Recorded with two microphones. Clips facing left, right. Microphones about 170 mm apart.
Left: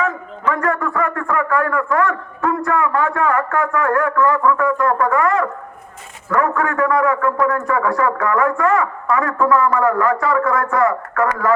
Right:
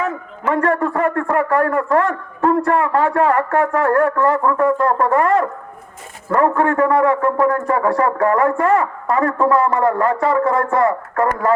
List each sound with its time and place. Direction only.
0.0 s a man's voice: 30° right (ahead or behind)